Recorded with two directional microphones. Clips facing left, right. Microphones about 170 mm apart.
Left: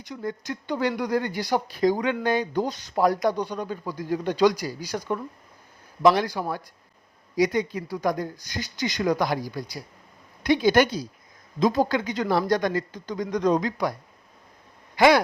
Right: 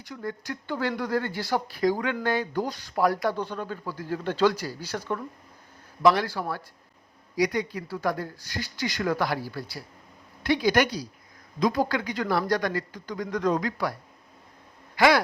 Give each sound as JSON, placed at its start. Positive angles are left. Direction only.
{"t": 0.0, "sound": "speech", "side_deg": 20}
{"t": 14.9, "sound": "speech", "side_deg": 20}